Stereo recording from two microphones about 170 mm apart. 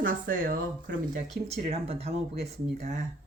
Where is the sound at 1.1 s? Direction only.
40° right (ahead or behind).